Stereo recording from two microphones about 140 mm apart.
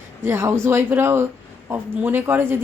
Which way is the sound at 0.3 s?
20° right (ahead or behind).